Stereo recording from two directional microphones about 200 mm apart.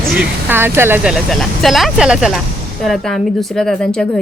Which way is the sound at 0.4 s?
10° right (ahead or behind).